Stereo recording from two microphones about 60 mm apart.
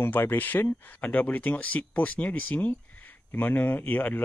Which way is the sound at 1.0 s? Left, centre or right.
Left.